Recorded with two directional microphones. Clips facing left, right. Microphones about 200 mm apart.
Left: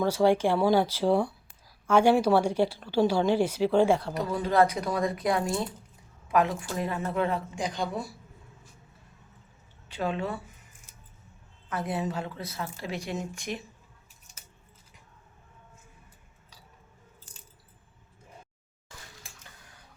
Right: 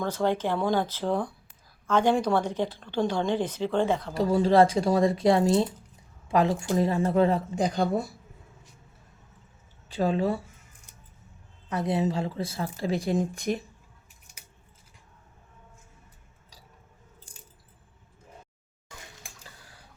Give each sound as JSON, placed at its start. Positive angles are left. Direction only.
{"t": 0.0, "sound": "a woman's voice", "side_deg": 10}
{"t": 4.1, "sound": "a woman's voice", "side_deg": -30}
{"t": 9.9, "sound": "a woman's voice", "side_deg": -35}
{"t": 11.7, "sound": "speech", "side_deg": -20}
{"t": 19.4, "sound": "tick-tock", "side_deg": -30}